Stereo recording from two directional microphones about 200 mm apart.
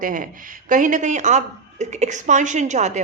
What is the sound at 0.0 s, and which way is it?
A woman's voice, 40° right (ahead or behind).